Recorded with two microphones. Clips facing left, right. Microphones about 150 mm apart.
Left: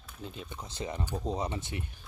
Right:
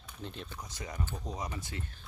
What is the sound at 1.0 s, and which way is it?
Speech, 15° left (ahead or behind).